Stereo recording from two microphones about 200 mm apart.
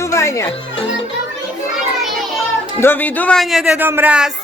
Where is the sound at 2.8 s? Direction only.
10° left (ahead or behind); by 4.2 s 10° right (ahead or behind).